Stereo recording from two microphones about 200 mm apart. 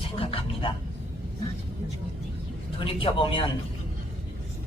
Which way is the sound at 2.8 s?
25° left (ahead or behind).